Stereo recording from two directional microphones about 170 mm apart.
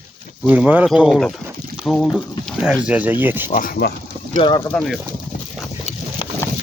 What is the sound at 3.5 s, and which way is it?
Speech, 55° left (ahead or behind).